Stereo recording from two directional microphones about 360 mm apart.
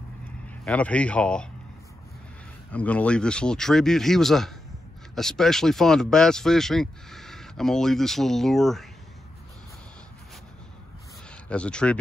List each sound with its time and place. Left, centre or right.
0.7 s speech: centre
2.7 s speech: centre
11.2 s speech: centre